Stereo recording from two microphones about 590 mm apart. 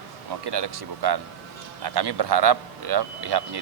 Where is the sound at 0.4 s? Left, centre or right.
Right.